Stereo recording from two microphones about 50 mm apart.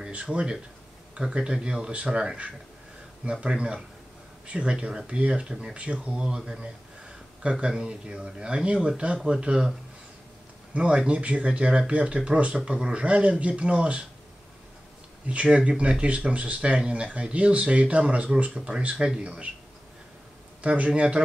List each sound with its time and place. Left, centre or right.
0.1 s speech: centre
7.6 s speech: centre
10.7 s speech: centre
15.2 s speech: right
20.6 s speech: right